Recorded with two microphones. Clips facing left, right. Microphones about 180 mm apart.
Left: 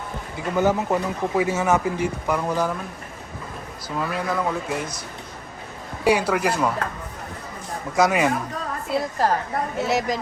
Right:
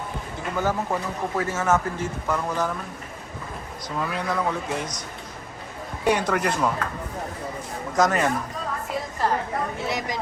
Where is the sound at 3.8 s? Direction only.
5° left (ahead or behind).